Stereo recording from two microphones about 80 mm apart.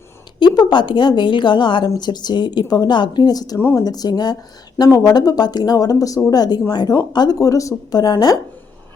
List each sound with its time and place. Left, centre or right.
0.3 s a woman's voice: left
2.0 s speech: left
3.6 s speech: left
3.8 s speech: left
7.1 s speech: left
7.3 s speech: left